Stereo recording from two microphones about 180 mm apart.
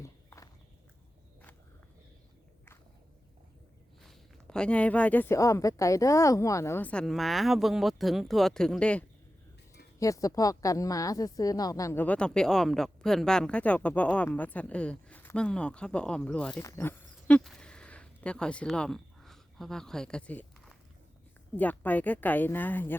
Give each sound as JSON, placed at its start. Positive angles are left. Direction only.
{"t": 0.0, "sound": "horse", "side_deg": 15}
{"t": 4.0, "sound": "a woman's voice", "side_deg": 0}
{"t": 10.0, "sound": "a woman's voice", "side_deg": 20}
{"t": 16.6, "sound": "a sound", "side_deg": 15}
{"t": 21.5, "sound": "a woman's voice", "side_deg": 10}